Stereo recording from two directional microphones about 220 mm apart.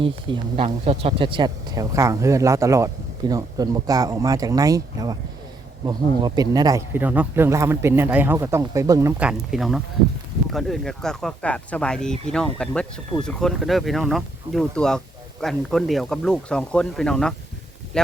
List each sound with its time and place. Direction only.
0.0 s speech: 25° right (ahead or behind); by 18.1 s 5° left (ahead or behind)